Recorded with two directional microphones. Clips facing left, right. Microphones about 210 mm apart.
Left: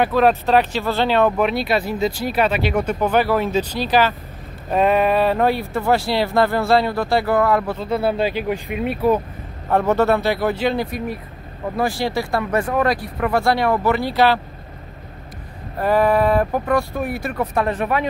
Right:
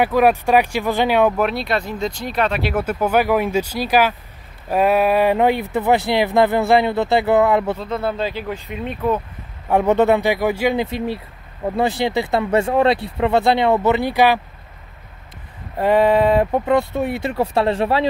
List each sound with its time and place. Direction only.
0.0 s speech: 10° right (ahead or behind)
1.3 s speech: centre (ahead or behind); by 7.7 s 20° right (ahead or behind)
7.8 s speech: 10° left (ahead or behind)
9.7 s speech: 15° right (ahead or behind)
10.9 s speech: 25° right (ahead or behind)
15.8 s speech: 20° right (ahead or behind)